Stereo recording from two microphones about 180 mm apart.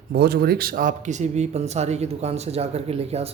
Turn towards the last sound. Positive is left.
turn(degrees=-35)  # may be behind; listen again after turning